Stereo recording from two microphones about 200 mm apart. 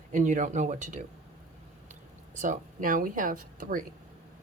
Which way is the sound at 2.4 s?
40° right (ahead or behind).